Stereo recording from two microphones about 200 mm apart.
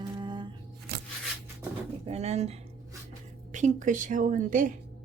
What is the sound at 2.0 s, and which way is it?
Speech, 30° right (ahead or behind).